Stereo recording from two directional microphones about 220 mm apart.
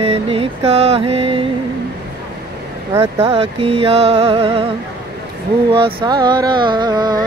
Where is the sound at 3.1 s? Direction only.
25° right (ahead or behind).